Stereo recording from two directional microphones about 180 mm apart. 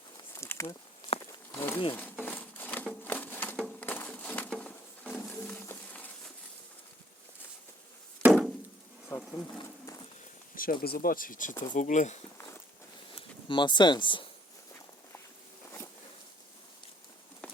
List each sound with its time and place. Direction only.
0.3 s insect: 15° left (ahead or behind)
1.2 s a sound: 15° left (ahead or behind)
1.9 s crumpling: 10° left (ahead or behind)
8.2 s chop: 5° left (ahead or behind)
9.0 s bee: 15° left (ahead or behind)
10.5 s speech: 50° left (ahead or behind)
13.1 s speech: 25° left (ahead or behind)
17.4 s clip-clop: 5° left (ahead or behind)